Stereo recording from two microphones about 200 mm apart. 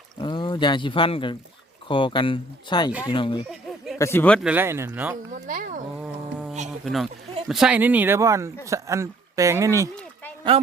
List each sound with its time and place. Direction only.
0.2 s speech: 25° left (ahead or behind)
3.4 s a sound: centre (ahead or behind)
3.9 s speech: 15° left (ahead or behind)
4.4 s speech: 10° right (ahead or behind)
5.3 s speech: 40° right (ahead or behind)
6.0 s a sound: 5° right (ahead or behind)
6.7 s speech: centre (ahead or behind)
10.5 s a man's voice: 30° right (ahead or behind)